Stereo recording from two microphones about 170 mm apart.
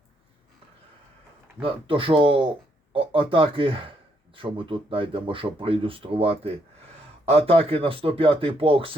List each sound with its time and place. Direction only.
1.6 s speech: 30° right (ahead or behind)